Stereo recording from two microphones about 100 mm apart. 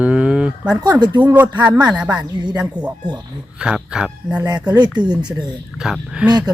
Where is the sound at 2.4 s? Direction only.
50° right (ahead or behind).